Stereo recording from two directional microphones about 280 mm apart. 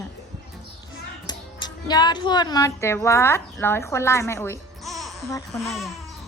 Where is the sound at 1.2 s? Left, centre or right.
Centre.